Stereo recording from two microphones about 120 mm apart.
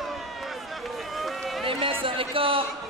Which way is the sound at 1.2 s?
Centre (ahead or behind).